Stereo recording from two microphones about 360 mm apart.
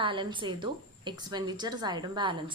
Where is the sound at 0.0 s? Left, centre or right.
Centre.